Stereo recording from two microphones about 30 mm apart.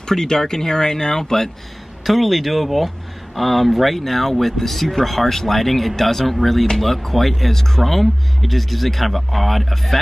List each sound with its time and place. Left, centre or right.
0.0 s speech: centre
2.0 s speech: centre
7.5 s speech: centre